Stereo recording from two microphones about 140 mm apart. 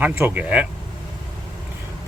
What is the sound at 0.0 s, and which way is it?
Speech, 15° right (ahead or behind).